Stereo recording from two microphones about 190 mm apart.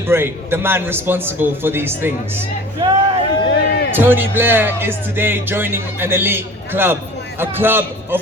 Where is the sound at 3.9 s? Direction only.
10° right (ahead or behind).